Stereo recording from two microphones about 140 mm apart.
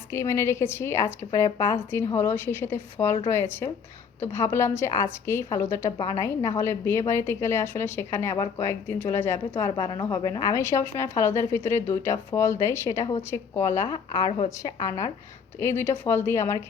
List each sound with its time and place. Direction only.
0.1 s a woman's voice: 20° left (ahead or behind)